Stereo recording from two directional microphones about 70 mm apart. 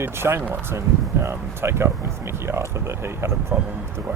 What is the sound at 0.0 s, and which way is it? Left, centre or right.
Speech, right.